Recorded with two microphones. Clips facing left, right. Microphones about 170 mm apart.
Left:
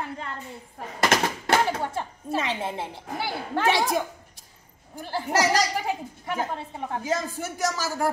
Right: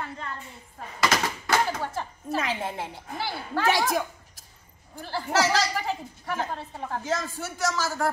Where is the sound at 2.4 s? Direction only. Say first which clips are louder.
Left 1 dB; centre (ahead or behind).